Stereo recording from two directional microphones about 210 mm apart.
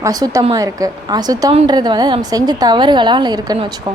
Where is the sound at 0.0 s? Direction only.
15° right (ahead or behind).